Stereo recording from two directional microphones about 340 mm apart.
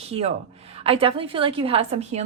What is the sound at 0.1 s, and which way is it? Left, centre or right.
A woman's voice, centre.